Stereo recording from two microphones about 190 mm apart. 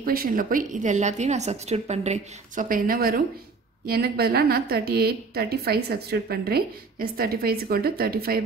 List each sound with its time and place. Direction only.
0.0 s a woman's voice: 50° right (ahead or behind)